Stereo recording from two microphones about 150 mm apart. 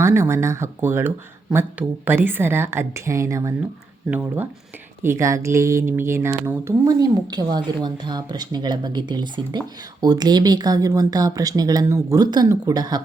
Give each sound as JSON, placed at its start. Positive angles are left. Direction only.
{"t": 0.0, "sound": "a woman's voice", "side_deg": -15}
{"t": 1.5, "sound": "a woman's voice", "side_deg": -5}
{"t": 4.1, "sound": "a woman's voice", "side_deg": -10}